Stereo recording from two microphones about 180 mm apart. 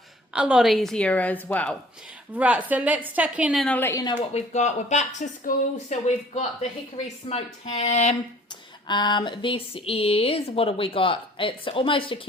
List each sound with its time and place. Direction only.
0.3 s a woman's voice: 5° right (ahead or behind)
2.3 s a woman's voice: 10° right (ahead or behind)
3.8 s speech: 15° left (ahead or behind)
4.0 s speech: 25° left (ahead or behind)
4.4 s speech: 40° left (ahead or behind)
8.9 s speech: 25° left (ahead or behind)